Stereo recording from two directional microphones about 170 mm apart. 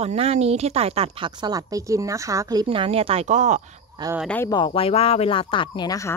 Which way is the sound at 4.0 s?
25° right (ahead or behind).